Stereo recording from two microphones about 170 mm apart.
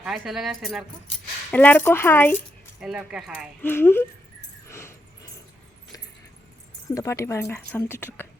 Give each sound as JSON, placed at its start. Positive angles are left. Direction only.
{"t": 0.0, "sound": "speech", "side_deg": 0}
{"t": 2.8, "sound": "speech", "side_deg": -5}
{"t": 3.6, "sound": "speech", "side_deg": 15}
{"t": 4.7, "sound": "a sound", "side_deg": 15}
{"t": 6.9, "sound": "speech", "side_deg": 20}